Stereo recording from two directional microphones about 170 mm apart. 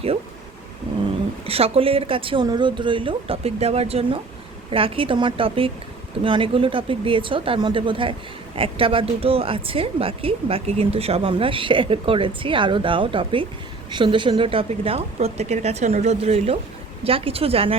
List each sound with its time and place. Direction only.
1.5 s speech: 35° right (ahead or behind)